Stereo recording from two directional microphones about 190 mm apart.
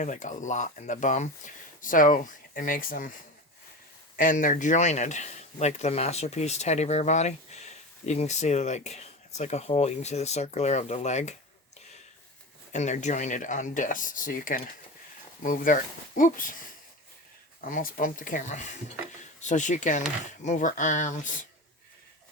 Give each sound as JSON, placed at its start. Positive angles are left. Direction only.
{"t": 0.0, "sound": "speech", "side_deg": 40}
{"t": 4.2, "sound": "speech", "side_deg": 45}
{"t": 12.7, "sound": "speech", "side_deg": 40}
{"t": 17.7, "sound": "speech", "side_deg": 45}